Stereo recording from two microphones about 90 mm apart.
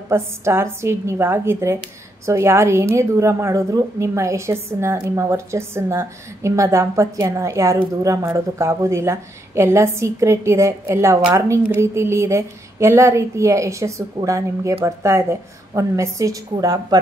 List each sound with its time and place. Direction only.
0.1 s a woman's voice: 30° right (ahead or behind)